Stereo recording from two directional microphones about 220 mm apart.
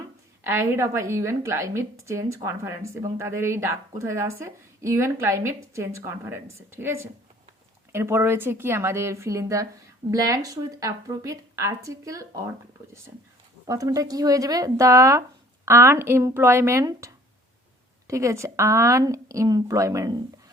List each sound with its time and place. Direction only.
0.4 s a woman's voice: 10° right (ahead or behind)
13.7 s a woman's voice: 15° right (ahead or behind)